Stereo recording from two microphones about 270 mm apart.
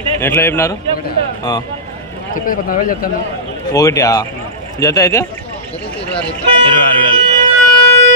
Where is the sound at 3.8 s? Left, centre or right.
Centre.